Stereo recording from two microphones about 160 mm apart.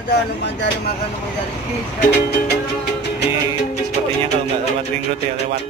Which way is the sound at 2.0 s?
90° left.